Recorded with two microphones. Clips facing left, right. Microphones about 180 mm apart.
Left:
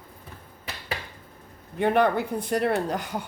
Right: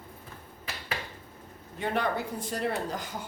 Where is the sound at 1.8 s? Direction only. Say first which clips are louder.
Left 8 dB; 60° left (ahead or behind).